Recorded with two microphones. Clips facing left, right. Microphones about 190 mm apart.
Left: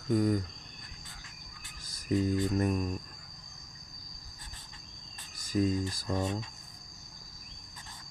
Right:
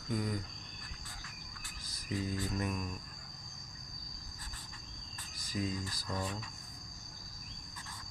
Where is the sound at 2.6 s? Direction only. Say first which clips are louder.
Left 8 dB; 40° left (ahead or behind).